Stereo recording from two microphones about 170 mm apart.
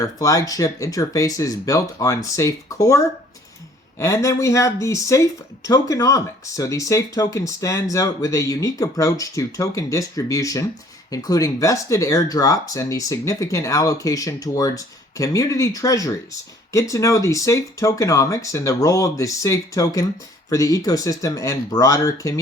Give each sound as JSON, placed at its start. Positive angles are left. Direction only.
{"t": 0.0, "sound": "speech", "side_deg": 20}